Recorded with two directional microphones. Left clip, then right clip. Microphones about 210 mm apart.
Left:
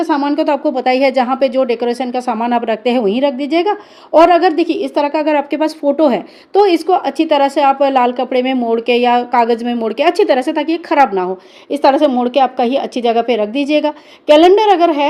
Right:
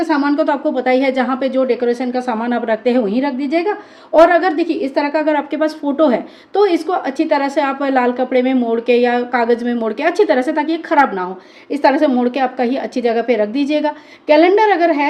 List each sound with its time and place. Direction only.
0.0 s a woman's voice: 30° left (ahead or behind)
3.3 s a woman's voice: centre (ahead or behind)
4.3 s a woman's voice: 30° left (ahead or behind)
4.7 s a woman's voice: centre (ahead or behind)
5.0 s a woman's voice: 35° left (ahead or behind)